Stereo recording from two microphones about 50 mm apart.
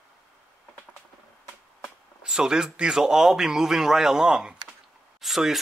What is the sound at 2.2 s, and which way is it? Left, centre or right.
Speech, centre.